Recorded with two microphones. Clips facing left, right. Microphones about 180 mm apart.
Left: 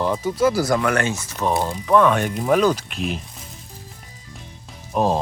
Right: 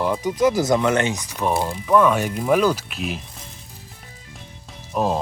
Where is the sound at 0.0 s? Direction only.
15° right (ahead or behind).